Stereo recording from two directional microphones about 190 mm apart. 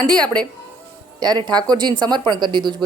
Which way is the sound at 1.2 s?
20° right (ahead or behind).